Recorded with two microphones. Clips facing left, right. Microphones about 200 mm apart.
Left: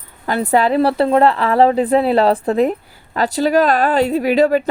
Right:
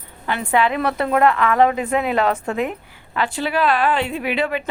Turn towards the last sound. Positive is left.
turn(degrees=40)  # may be behind; listen again after turning